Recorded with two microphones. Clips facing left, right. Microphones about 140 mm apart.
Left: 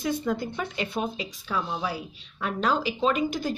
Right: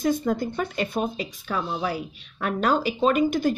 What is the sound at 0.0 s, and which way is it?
A woman's voice, 45° right (ahead or behind).